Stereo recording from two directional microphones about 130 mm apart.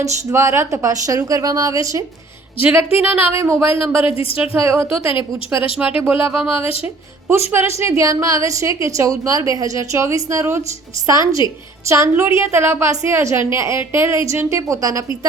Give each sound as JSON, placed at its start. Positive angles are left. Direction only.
{"t": 0.3, "sound": "a woman's voice", "side_deg": -25}
{"t": 2.6, "sound": "a woman's voice", "side_deg": -15}
{"t": 4.0, "sound": "a woman's voice", "side_deg": 45}
{"t": 4.4, "sound": "a woman's voice", "side_deg": -15}